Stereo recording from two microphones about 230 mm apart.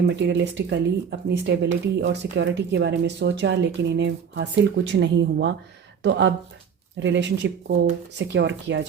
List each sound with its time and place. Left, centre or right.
0.1 s speech: right